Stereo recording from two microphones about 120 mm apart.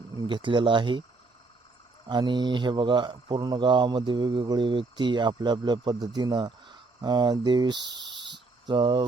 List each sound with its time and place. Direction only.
0.2 s speech: 40° right (ahead or behind)
2.0 s speech: 40° right (ahead or behind)